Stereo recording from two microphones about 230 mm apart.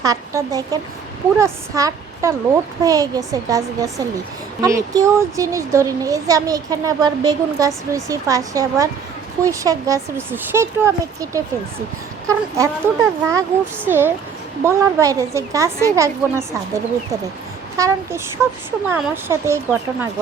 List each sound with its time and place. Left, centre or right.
0.0 s a child's voice: centre